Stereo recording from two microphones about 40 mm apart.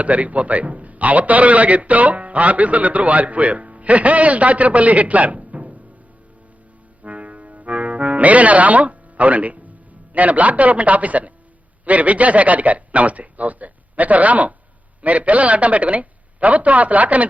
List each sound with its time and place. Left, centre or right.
0.0 s a man's voice: right
7.0 s music: right
10.1 s a man's voice: right